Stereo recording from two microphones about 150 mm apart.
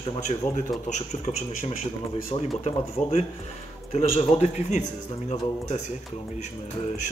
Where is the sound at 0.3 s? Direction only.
45° left (ahead or behind).